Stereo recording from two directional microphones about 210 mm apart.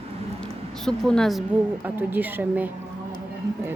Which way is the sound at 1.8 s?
10° right (ahead or behind).